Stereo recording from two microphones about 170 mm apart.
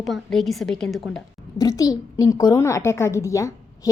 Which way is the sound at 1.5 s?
20° left (ahead or behind).